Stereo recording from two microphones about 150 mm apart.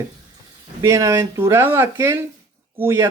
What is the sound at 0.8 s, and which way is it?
Speech, 20° right (ahead or behind).